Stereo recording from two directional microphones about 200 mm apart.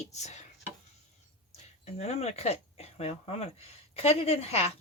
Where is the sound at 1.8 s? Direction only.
35° left (ahead or behind).